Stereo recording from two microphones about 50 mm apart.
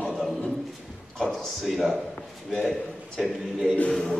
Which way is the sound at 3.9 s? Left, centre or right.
Centre.